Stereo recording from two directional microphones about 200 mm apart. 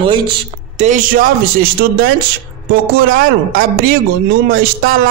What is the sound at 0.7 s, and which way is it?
A man's voice, 40° right (ahead or behind).